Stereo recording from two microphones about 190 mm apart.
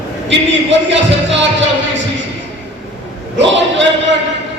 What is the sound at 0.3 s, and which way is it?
Speech, 70° right (ahead or behind).